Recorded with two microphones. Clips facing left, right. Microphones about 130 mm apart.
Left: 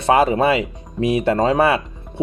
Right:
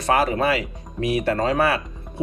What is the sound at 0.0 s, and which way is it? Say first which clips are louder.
Speech: left 5 dB; 25° left (ahead or behind).